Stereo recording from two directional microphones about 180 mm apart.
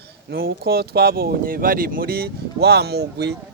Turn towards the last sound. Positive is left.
turn(degrees=-65)  # may be behind; listen again after turning